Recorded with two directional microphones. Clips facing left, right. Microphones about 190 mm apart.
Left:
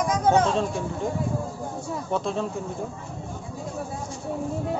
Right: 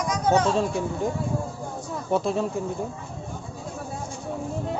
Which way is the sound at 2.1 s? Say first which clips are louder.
Right 3 dB; 5° right (ahead or behind).